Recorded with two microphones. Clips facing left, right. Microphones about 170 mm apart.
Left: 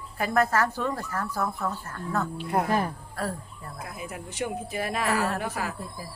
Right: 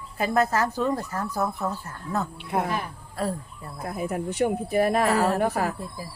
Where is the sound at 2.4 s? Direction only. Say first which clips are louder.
Left 2 dB; centre (ahead or behind).